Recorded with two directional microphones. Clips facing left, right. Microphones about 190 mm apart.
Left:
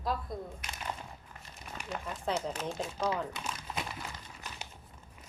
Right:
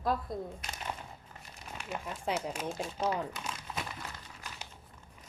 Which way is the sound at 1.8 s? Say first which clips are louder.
Even; 10° right (ahead or behind).